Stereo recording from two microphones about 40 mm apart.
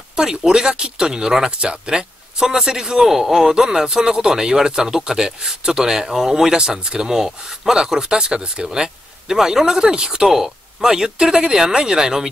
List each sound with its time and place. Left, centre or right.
0.1 s speech: centre